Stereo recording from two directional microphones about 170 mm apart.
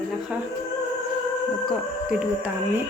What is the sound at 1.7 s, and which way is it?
Speech, 5° right (ahead or behind).